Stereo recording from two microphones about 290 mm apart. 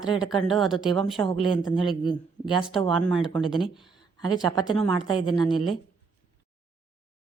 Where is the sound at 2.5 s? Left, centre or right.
Centre.